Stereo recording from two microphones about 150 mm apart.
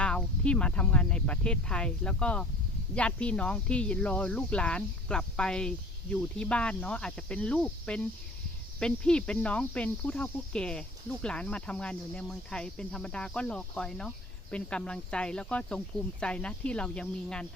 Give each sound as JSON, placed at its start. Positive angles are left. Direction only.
{"t": 0.0, "sound": "speech", "side_deg": 10}